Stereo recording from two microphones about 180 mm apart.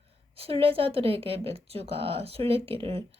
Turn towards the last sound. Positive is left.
turn(degrees=-35)  # may be behind; listen again after turning